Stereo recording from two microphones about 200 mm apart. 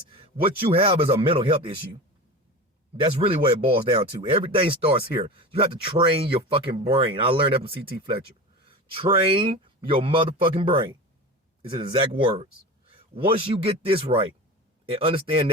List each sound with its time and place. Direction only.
0.1 s speech: 25° right (ahead or behind)
3.0 s speech: 25° right (ahead or behind)